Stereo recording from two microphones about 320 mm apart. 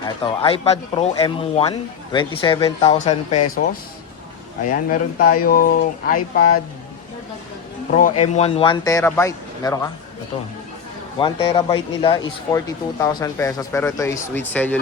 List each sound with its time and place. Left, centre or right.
0.0 s speech: centre
4.9 s speech: left
7.9 s speech: left
11.2 s speech: centre